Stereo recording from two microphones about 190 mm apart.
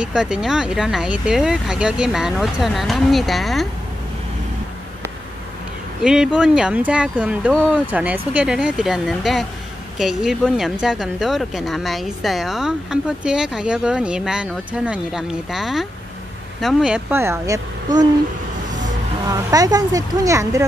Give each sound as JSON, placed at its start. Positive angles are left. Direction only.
{"t": 0.0, "sound": "speech", "side_deg": -5}
{"t": 6.0, "sound": "speech", "side_deg": -5}
{"t": 19.2, "sound": "speech", "side_deg": -20}